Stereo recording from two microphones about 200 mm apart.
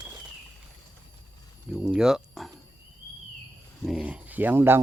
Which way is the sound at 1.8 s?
5° right (ahead or behind).